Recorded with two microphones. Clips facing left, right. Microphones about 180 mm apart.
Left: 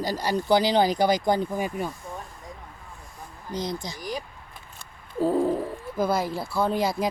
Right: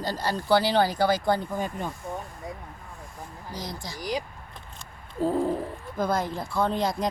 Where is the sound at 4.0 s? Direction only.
10° right (ahead or behind).